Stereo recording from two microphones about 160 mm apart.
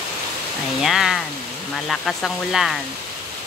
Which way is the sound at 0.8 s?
Centre (ahead or behind).